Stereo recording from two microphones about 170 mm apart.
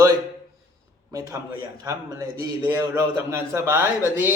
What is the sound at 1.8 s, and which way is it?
A man's voice, 20° right (ahead or behind).